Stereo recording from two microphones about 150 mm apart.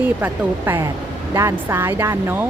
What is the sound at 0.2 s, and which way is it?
Speech, 15° right (ahead or behind).